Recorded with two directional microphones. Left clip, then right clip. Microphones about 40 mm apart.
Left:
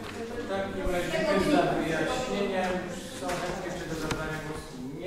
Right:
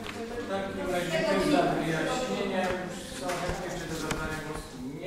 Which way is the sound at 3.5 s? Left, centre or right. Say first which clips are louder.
Even; right.